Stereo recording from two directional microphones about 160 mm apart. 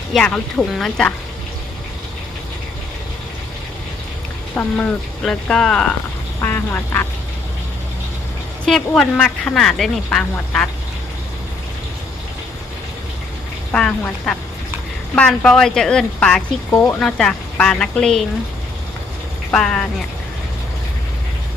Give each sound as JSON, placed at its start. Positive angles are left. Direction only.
{"t": 0.1, "sound": "speech", "side_deg": 5}
{"t": 4.5, "sound": "speech", "side_deg": 5}
{"t": 6.4, "sound": "quack", "side_deg": 15}
{"t": 8.6, "sound": "speech", "side_deg": 5}
{"t": 13.7, "sound": "speech", "side_deg": 5}
{"t": 16.7, "sound": "speech", "side_deg": 15}
{"t": 17.0, "sound": "speech", "side_deg": 5}
{"t": 19.5, "sound": "speech", "side_deg": 5}